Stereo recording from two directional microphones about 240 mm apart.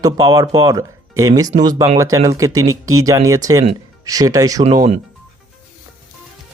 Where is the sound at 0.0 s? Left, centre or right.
Centre.